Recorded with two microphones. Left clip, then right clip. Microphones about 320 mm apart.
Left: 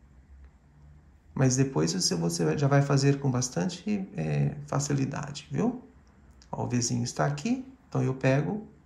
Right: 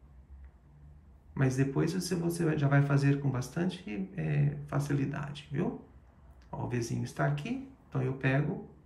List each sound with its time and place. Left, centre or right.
1.3 s speech: centre